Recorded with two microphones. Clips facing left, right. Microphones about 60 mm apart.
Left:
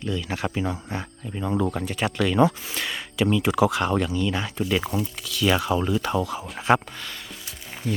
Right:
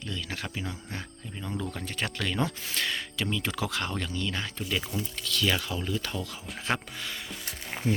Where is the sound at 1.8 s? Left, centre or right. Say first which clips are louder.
Left 8 dB; centre.